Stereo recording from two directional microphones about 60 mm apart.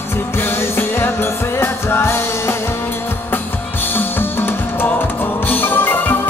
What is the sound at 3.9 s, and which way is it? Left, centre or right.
Music, left.